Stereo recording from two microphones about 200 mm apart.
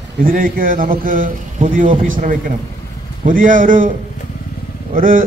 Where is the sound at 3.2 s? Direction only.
40° right (ahead or behind).